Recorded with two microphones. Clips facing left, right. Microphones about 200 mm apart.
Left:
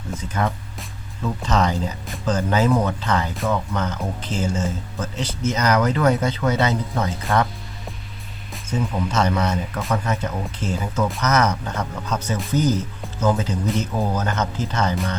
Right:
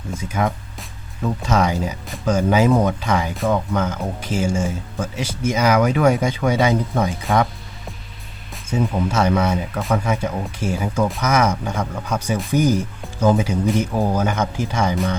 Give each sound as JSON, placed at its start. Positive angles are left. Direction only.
{"t": 0.1, "sound": "speech", "side_deg": -10}
{"t": 8.5, "sound": "speech", "side_deg": -10}